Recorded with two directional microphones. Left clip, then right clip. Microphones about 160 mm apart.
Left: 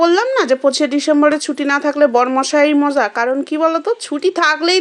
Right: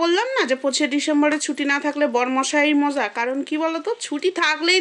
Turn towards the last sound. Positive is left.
turn(degrees=20)  # may be behind; listen again after turning